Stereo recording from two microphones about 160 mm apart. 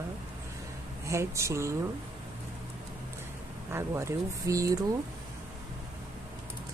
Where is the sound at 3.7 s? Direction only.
15° right (ahead or behind).